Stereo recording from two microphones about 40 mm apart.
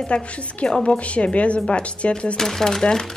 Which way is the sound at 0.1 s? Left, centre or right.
Left.